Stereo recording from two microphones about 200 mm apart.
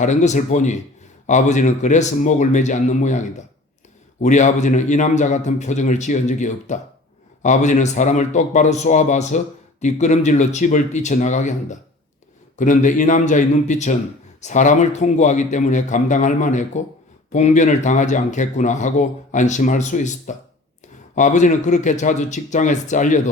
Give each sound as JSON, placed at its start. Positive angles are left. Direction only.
{"t": 0.0, "sound": "speech", "side_deg": 35}